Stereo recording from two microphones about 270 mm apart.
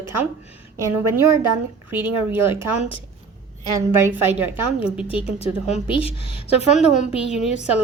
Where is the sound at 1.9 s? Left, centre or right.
Centre.